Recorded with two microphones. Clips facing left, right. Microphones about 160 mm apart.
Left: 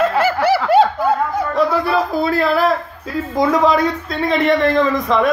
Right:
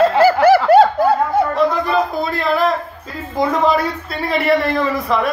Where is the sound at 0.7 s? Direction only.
40° right (ahead or behind).